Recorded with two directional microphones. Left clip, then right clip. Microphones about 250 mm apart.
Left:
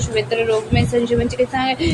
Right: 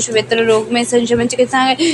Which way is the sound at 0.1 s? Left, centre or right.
Right.